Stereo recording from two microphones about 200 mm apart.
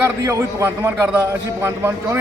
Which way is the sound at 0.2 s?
15° right (ahead or behind).